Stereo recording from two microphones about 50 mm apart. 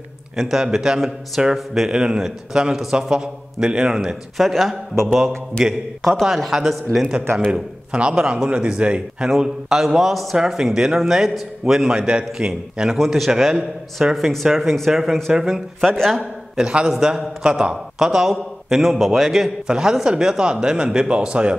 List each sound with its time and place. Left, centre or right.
0.4 s speech: centre
4.4 s a man's voice: centre
7.5 s a man's voice: centre
9.3 s a man's voice: centre
11.9 s speech: centre
12.9 s a man's voice: centre
16.2 s a man's voice: centre